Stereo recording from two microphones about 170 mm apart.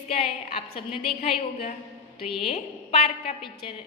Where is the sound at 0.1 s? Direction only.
35° left (ahead or behind).